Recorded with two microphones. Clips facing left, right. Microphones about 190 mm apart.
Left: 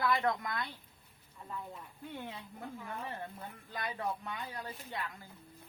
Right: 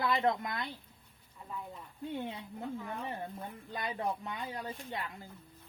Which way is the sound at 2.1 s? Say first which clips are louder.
Right 5 dB; 25° right (ahead or behind).